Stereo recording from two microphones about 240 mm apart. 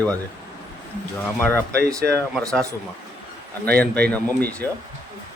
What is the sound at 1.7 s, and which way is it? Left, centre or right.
Speech, right.